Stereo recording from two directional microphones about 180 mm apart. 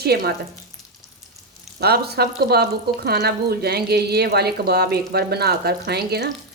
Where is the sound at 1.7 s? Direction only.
60° right (ahead or behind).